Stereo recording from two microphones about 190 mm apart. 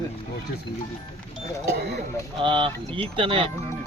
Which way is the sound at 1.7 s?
60° right (ahead or behind).